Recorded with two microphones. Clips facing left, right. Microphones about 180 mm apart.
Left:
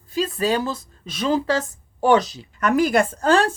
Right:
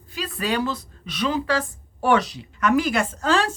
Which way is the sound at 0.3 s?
40° left (ahead or behind).